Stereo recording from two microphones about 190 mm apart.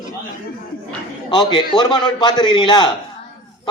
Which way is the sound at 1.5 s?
25° left (ahead or behind).